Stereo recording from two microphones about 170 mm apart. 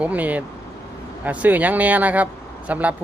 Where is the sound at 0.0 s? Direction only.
10° right (ahead or behind).